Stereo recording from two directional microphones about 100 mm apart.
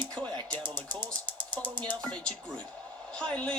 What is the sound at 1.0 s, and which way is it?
Speech, 50° right (ahead or behind).